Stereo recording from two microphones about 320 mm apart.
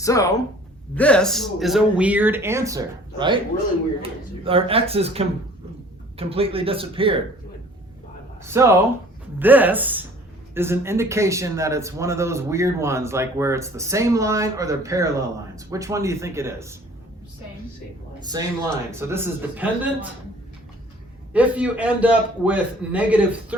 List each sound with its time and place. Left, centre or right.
0.0 s speech: centre
8.4 s speech: centre
18.2 s speech: centre
21.3 s speech: centre